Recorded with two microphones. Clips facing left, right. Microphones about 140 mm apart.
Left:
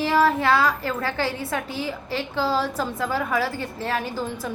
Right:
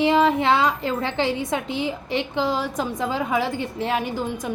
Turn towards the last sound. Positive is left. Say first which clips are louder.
# right 2 dB
turn(degrees=-15)  # may be behind; listen again after turning